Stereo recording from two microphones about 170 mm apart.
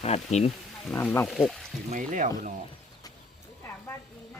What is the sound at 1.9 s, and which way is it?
Speech, 50° right (ahead or behind).